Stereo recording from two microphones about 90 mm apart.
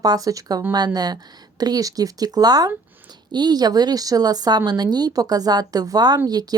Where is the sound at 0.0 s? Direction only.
45° right (ahead or behind).